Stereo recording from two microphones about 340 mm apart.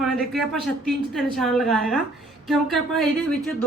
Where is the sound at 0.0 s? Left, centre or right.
Centre.